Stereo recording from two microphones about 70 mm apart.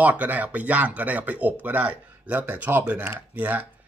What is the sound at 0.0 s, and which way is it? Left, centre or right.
Speech, right.